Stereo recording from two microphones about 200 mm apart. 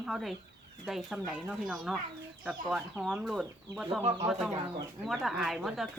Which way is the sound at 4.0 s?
30° right (ahead or behind).